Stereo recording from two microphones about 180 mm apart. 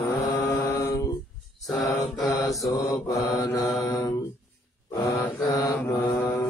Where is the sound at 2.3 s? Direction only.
20° left (ahead or behind).